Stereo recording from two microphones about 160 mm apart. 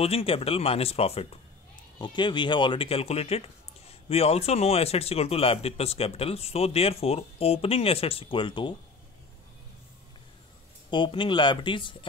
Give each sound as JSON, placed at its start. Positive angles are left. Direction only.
{"t": 0.0, "sound": "speech", "side_deg": 40}
{"t": 2.0, "sound": "speech", "side_deg": 30}
{"t": 10.9, "sound": "speech", "side_deg": 30}